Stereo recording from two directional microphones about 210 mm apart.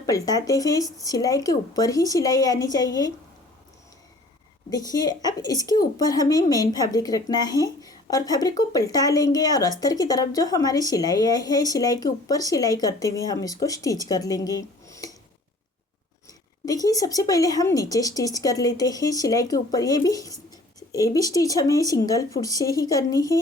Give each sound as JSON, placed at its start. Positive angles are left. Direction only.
{"t": 0.0, "sound": "speech", "side_deg": 15}
{"t": 4.7, "sound": "speech", "side_deg": 20}
{"t": 16.6, "sound": "speech", "side_deg": 15}